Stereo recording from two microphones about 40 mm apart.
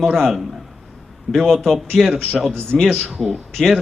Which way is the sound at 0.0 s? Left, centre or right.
Centre.